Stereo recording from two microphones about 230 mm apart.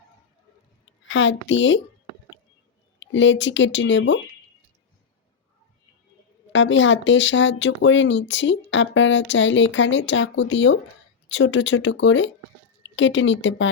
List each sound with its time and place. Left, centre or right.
1.0 s speech: left
3.0 s speech: left
6.5 s speech: left